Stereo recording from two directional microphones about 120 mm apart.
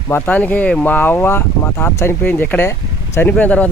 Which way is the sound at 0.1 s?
15° left (ahead or behind).